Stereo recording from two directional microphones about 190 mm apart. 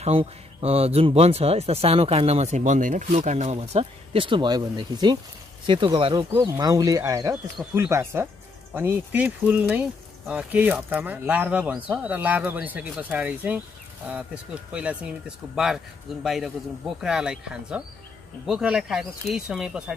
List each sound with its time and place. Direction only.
0.0 s speech: 30° right (ahead or behind); by 19.8 s centre (ahead or behind)